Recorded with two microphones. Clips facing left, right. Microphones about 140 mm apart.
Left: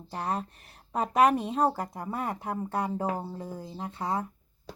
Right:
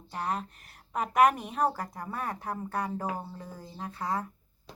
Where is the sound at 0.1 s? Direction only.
30° left (ahead or behind).